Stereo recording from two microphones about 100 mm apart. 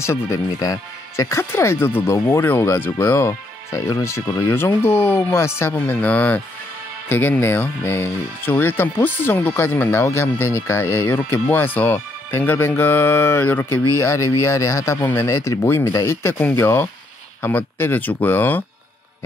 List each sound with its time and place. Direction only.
0.0 s speech: 30° left (ahead or behind)
5.8 s speech: 15° left (ahead or behind)